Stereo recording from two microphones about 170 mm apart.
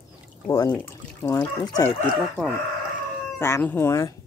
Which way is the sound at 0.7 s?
15° left (ahead or behind).